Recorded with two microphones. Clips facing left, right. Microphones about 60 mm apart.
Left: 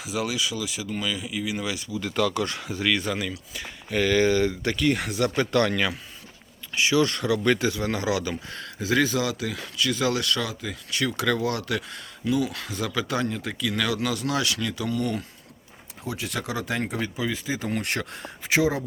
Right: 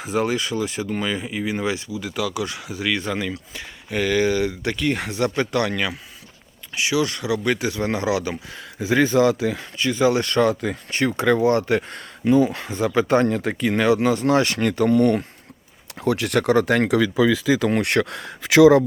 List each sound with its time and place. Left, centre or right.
0.0 s speech: right
1.9 s speech: centre
7.6 s speech: right
10.2 s speech: right
11.9 s speech: right
16.0 s speech: right
17.4 s speech: right